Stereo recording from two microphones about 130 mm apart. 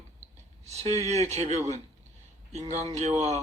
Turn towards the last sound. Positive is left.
turn(degrees=-55)  # may be behind; listen again after turning